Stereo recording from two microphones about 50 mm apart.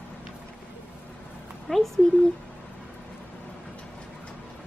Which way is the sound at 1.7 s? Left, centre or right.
Centre.